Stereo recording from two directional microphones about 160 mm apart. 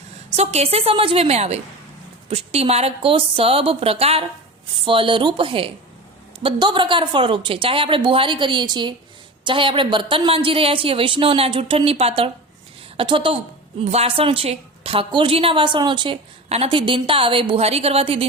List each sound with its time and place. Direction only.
0.3 s a woman's voice: 40° right (ahead or behind)